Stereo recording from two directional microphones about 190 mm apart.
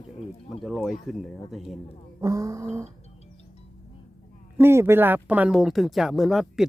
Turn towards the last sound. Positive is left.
turn(degrees=0)  # may be behind; listen again after turning